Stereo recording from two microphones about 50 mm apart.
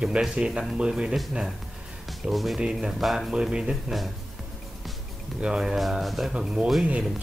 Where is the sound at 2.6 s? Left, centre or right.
Centre.